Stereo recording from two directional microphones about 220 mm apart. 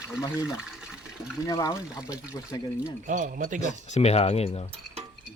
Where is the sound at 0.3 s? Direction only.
5° right (ahead or behind).